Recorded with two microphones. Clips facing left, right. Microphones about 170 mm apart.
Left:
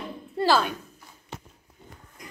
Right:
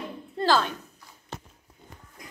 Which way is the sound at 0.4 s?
10° left (ahead or behind).